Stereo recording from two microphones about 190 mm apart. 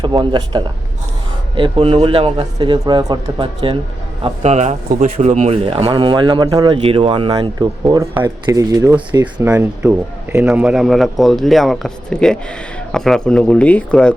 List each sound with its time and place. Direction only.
0.0 s a man's voice: 25° right (ahead or behind)
4.2 s a man's voice: 35° right (ahead or behind); by 14.1 s 5° left (ahead or behind)